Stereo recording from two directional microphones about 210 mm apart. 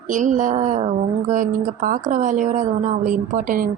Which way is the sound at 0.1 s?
35° right (ahead or behind).